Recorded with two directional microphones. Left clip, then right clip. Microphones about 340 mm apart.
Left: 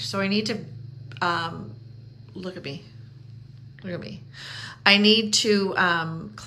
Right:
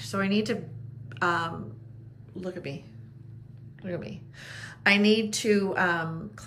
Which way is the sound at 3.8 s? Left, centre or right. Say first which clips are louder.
Left 1 dB; centre.